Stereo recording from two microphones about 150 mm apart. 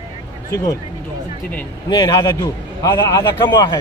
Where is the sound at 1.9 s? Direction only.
30° left (ahead or behind).